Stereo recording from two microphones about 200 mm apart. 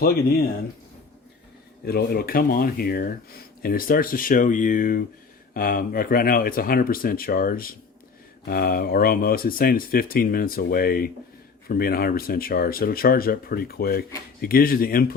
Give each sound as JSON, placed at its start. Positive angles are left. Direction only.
{"t": 0.0, "sound": "speech", "side_deg": 50}
{"t": 1.8, "sound": "speech", "side_deg": 50}